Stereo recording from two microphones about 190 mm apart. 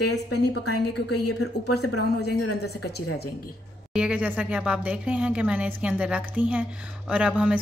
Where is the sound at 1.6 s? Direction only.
60° left (ahead or behind).